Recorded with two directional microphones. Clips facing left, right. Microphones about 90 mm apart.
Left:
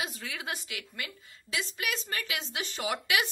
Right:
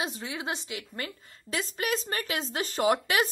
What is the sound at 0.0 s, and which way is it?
Speech, 25° right (ahead or behind).